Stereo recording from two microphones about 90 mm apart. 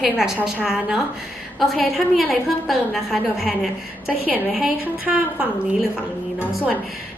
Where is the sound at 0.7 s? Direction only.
5° right (ahead or behind).